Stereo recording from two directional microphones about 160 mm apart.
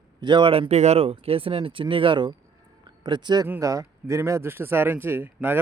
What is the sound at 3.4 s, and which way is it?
Speech, 20° right (ahead or behind).